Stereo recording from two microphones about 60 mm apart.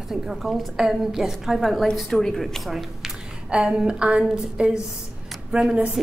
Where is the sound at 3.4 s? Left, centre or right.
Centre.